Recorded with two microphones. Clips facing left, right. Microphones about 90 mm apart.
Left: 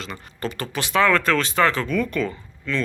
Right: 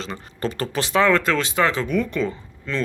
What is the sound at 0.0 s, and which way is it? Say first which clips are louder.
Speech: right 3 dB; 30° right (ahead or behind).